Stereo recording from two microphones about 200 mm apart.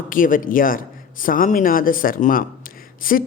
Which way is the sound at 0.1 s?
45° left (ahead or behind).